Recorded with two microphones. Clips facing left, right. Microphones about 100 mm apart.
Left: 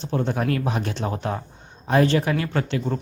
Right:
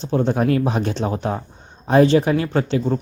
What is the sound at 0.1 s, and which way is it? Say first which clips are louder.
Speech: right 6 dB; 20° right (ahead or behind).